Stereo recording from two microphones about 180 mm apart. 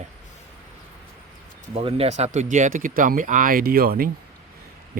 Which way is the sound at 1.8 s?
35° right (ahead or behind).